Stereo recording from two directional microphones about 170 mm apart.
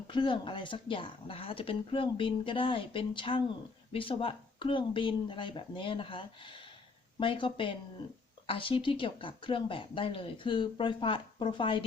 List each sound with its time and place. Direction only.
0.1 s speech: 30° left (ahead or behind)